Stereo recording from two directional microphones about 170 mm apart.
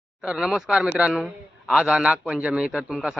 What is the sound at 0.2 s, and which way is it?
A man's voice, 5° right (ahead or behind).